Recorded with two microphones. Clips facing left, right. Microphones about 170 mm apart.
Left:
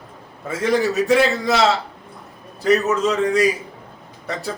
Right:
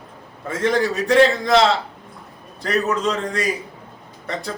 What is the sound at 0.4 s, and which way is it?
A man's voice, 5° left (ahead or behind).